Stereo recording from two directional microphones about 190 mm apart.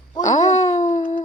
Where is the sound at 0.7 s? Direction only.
40° left (ahead or behind).